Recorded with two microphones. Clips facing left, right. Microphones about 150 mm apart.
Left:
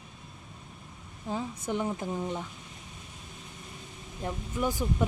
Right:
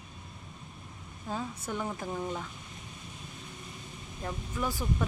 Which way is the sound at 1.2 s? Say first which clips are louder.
Left 3 dB; 15° left (ahead or behind).